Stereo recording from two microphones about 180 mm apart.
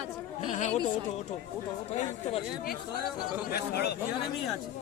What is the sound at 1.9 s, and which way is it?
Speech, 30° left (ahead or behind).